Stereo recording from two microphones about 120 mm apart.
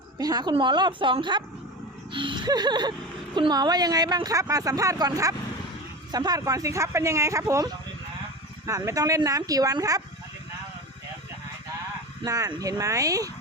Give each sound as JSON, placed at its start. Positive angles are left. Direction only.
{"t": 0.2, "sound": "speech", "side_deg": -35}
{"t": 12.2, "sound": "speech", "side_deg": -30}